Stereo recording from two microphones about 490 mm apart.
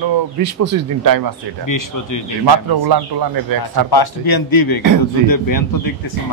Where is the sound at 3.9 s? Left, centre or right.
Left.